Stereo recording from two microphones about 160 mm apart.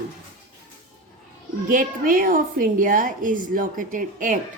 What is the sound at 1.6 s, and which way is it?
A woman's voice, 60° right (ahead or behind).